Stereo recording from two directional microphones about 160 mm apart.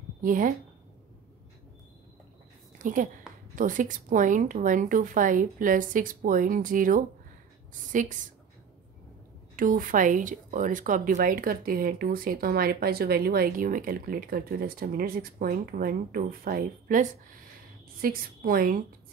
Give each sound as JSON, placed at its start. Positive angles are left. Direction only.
{"t": 0.2, "sound": "speech", "side_deg": -55}
{"t": 2.8, "sound": "a woman's voice", "side_deg": -55}
{"t": 9.6, "sound": "speech", "side_deg": -60}